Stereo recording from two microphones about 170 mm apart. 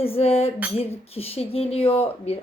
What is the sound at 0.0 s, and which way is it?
Speech, 35° left (ahead or behind).